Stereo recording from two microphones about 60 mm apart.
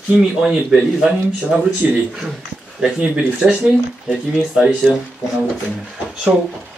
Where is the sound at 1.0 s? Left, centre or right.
Centre.